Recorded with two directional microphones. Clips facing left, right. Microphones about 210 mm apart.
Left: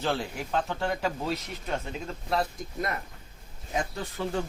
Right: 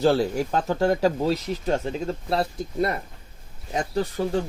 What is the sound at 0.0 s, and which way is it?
Speech, 40° right (ahead or behind).